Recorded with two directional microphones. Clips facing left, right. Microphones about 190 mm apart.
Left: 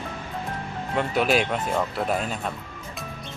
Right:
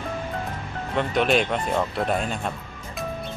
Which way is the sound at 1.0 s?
5° left (ahead or behind).